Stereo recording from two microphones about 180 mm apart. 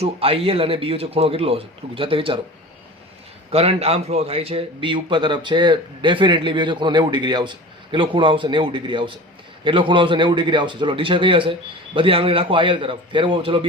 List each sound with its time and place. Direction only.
0.0 s a man's voice: 30° right (ahead or behind)
3.5 s a man's voice: 35° right (ahead or behind)